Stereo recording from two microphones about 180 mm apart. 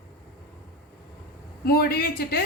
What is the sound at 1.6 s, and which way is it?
Speech, 60° left (ahead or behind).